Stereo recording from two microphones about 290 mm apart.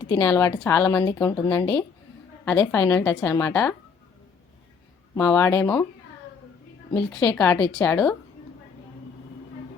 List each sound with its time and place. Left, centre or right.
0.1 s a woman's voice: centre
5.1 s a woman's voice: centre
6.9 s a woman's voice: centre